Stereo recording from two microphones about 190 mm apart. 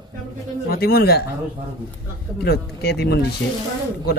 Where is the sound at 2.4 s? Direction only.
60° left (ahead or behind).